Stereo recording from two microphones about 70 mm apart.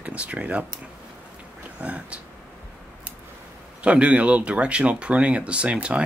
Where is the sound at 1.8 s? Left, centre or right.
Centre.